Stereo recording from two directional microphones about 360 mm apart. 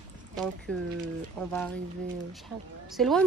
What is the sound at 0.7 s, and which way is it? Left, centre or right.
Speech, centre.